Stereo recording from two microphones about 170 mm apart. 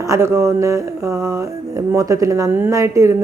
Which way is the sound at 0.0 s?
15° right (ahead or behind).